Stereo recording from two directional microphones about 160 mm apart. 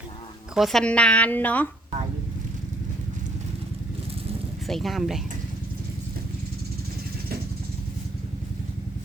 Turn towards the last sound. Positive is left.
turn(degrees=-70)  # may be behind; listen again after turning